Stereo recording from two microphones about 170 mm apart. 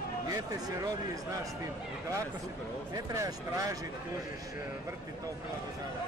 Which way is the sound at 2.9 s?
20° right (ahead or behind).